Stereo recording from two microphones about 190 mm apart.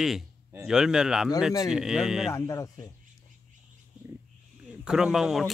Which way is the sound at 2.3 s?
15° left (ahead or behind).